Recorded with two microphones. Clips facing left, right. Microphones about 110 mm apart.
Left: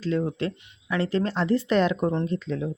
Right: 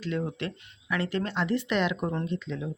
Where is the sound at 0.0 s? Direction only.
30° left (ahead or behind).